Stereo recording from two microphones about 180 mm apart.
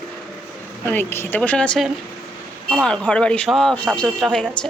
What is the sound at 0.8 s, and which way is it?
A man's voice, 15° left (ahead or behind).